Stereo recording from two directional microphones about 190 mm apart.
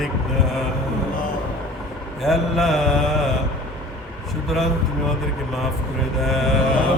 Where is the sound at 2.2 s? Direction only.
Centre (ahead or behind).